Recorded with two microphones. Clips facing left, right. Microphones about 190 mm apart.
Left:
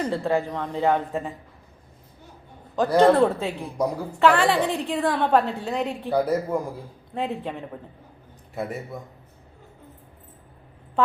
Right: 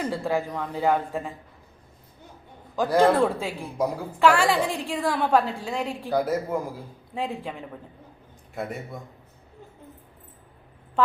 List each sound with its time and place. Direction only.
0.1 s speech: centre (ahead or behind)
2.7 s speech: centre (ahead or behind)